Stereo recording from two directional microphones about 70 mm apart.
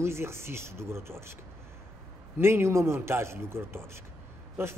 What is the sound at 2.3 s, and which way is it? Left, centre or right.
Speech, right.